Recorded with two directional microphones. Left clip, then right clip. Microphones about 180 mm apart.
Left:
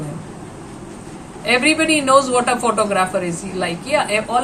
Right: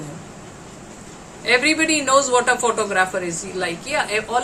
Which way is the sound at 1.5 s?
10° right (ahead or behind).